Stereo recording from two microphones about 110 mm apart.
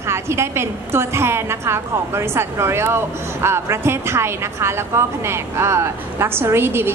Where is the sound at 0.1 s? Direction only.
25° right (ahead or behind).